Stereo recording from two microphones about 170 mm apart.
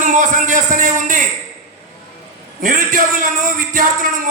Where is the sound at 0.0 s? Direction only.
50° right (ahead or behind).